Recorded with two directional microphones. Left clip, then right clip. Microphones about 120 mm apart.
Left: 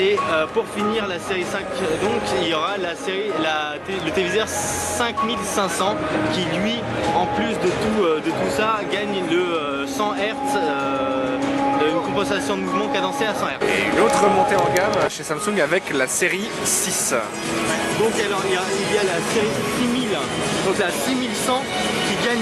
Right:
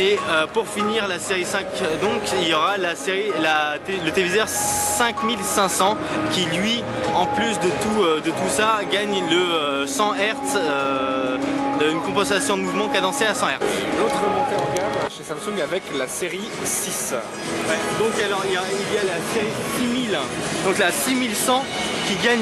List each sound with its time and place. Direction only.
0.0 s speech: 25° right (ahead or behind)
2.3 s speech: 30° right (ahead or behind)
6.3 s speech: 25° right (ahead or behind)
8.0 s speech: 30° right (ahead or behind)
11.8 s speech: 30° right (ahead or behind)
13.7 s speech: centre (ahead or behind)
15.5 s speech: 5° left (ahead or behind)
18.2 s speech: 15° right (ahead or behind)
20.7 s speech: 25° right (ahead or behind)